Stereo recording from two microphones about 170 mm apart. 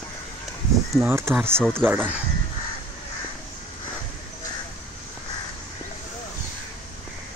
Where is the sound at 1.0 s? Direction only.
15° right (ahead or behind).